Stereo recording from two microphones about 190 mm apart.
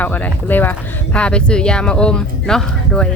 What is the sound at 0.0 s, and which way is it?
Speech, 10° left (ahead or behind).